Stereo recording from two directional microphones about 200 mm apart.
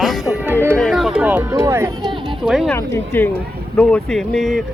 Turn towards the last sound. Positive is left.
turn(degrees=0)  # may be behind; listen again after turning